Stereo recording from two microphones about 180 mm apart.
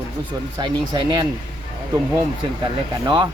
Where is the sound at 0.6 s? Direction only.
25° right (ahead or behind).